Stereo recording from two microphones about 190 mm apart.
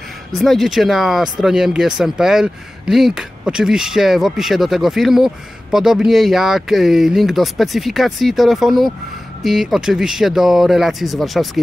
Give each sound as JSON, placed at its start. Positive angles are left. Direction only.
{"t": 0.3, "sound": "speech", "side_deg": 0}